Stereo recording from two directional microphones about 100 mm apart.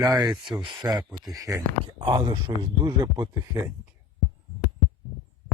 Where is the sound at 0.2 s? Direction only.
40° right (ahead or behind).